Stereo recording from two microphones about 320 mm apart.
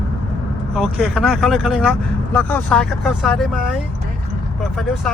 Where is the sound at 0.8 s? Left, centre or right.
Centre.